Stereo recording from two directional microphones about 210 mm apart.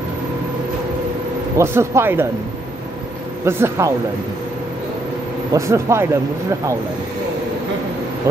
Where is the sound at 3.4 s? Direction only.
10° right (ahead or behind).